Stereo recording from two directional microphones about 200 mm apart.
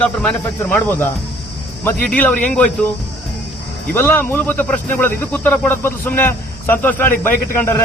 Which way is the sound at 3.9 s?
10° left (ahead or behind).